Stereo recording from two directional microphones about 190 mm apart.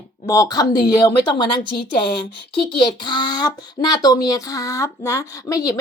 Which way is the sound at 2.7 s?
25° left (ahead or behind).